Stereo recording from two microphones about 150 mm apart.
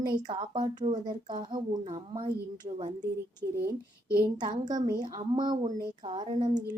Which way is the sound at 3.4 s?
15° right (ahead or behind).